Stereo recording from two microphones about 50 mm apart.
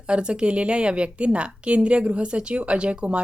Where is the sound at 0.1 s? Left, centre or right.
Centre.